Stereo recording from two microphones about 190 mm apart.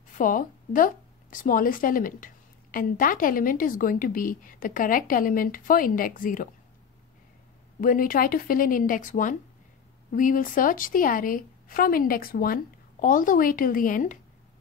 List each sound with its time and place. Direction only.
0.2 s speech: 45° left (ahead or behind)
7.8 s speech: 45° left (ahead or behind)